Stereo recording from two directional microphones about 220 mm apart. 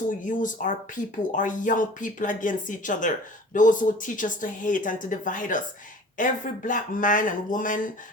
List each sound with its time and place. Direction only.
0.3 s speech: 35° left (ahead or behind)